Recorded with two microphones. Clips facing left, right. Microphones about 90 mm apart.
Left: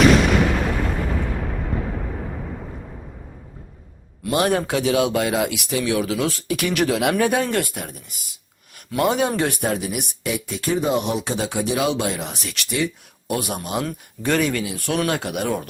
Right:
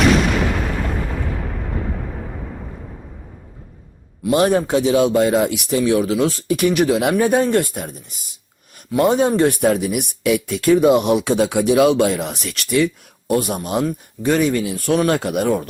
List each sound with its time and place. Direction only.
0.0 s artillery fire: centre (ahead or behind)
4.2 s speech: 25° right (ahead or behind)
9.6 s speech: 50° right (ahead or behind)
10.2 s speech: 65° right (ahead or behind)
13.2 s speech: 35° right (ahead or behind)
13.8 s speech: 20° right (ahead or behind)
14.6 s speech: 35° right (ahead or behind)